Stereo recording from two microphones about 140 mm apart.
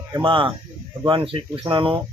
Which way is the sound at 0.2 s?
35° right (ahead or behind).